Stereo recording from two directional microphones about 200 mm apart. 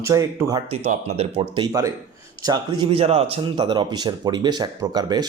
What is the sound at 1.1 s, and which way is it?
Speech, 30° right (ahead or behind).